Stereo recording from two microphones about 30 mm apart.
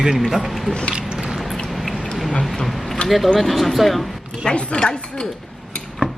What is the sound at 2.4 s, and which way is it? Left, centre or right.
Speech, centre.